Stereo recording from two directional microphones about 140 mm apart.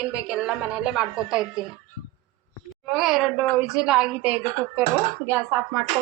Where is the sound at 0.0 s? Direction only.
10° right (ahead or behind).